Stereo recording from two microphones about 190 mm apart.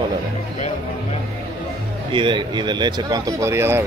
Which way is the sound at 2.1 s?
25° right (ahead or behind).